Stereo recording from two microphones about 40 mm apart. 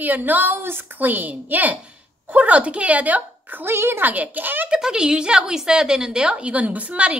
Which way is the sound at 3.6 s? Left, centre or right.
Right.